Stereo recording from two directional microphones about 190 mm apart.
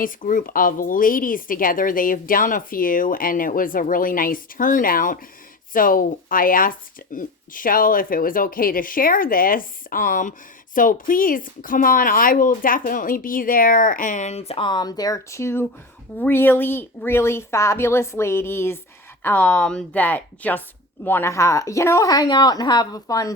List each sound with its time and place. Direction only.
0.0 s a woman's voice: 45° left (ahead or behind); by 23.3 s 20° left (ahead or behind)